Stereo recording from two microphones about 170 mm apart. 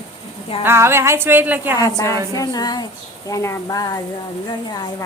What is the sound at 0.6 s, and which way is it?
A woman's voice, 15° right (ahead or behind).